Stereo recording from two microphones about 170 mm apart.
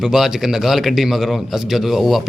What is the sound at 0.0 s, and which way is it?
A man's voice, 5° right (ahead or behind).